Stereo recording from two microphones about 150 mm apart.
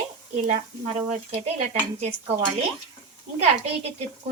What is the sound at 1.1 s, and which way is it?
Speech, 45° right (ahead or behind).